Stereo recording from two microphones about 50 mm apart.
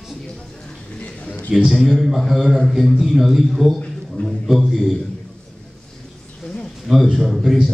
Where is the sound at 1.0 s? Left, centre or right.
Left.